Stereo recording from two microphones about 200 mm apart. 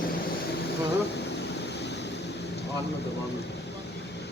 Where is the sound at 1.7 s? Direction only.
60° left (ahead or behind).